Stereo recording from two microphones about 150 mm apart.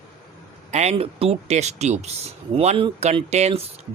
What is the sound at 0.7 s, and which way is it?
Speech, 45° right (ahead or behind).